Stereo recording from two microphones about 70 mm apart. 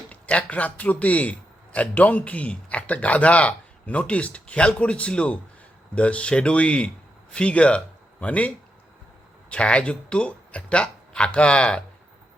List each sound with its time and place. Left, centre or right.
0.1 s a man's voice: centre